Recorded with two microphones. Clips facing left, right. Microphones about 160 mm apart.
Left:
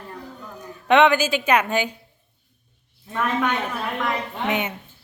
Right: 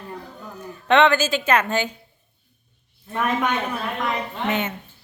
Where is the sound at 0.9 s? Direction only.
10° left (ahead or behind).